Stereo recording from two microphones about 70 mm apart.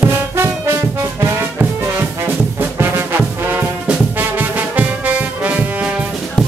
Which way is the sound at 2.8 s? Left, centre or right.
Right.